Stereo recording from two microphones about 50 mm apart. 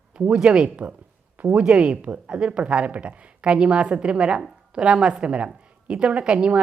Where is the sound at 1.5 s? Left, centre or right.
Right.